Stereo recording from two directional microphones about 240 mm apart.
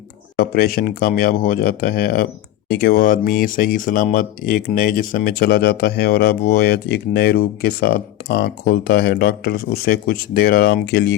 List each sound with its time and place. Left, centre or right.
0.3 s speech: left